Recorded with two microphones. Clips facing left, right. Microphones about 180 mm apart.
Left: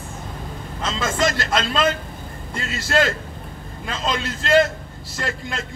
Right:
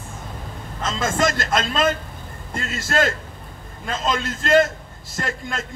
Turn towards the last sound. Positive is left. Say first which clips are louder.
# even
turn(degrees=-50)  # may be behind; listen again after turning